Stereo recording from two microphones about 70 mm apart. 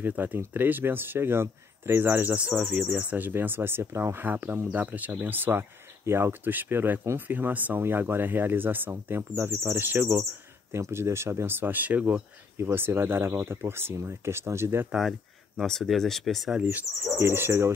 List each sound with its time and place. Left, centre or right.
0.0 s speech: right
12.5 s speech: right
15.0 s a sound: centre
15.6 s speech: centre
16.6 s speech: right